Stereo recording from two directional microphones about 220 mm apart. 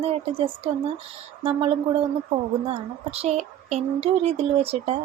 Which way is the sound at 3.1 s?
30° right (ahead or behind).